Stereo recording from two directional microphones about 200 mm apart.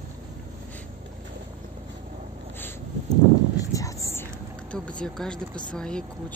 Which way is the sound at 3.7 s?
15° left (ahead or behind).